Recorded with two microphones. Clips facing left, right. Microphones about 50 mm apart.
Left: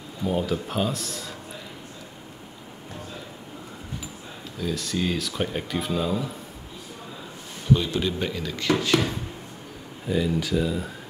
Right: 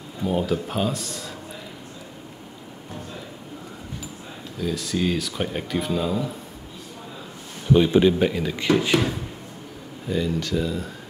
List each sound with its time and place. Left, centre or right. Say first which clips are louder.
0.2 s speech: right 2 dB; centre
4.6 s speech: right 2 dB; centre
7.7 s speech: right 7 dB; right
10.0 s speech: even; centre